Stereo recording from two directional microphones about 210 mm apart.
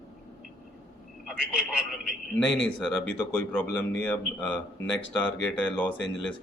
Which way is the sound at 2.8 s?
5° left (ahead or behind).